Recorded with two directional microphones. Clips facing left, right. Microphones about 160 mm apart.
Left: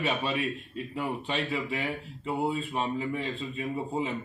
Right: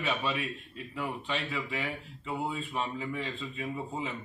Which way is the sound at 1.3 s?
40° left (ahead or behind).